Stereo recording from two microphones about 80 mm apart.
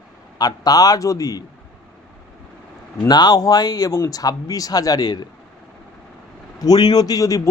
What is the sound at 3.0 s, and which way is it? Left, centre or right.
A man's voice, left.